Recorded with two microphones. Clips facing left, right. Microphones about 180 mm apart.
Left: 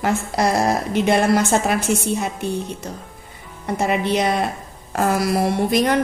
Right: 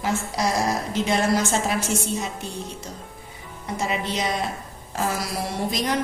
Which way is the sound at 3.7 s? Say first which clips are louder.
Left 7 dB; 60° left (ahead or behind).